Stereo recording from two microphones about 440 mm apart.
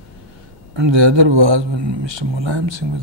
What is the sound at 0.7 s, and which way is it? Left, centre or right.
Speech, right.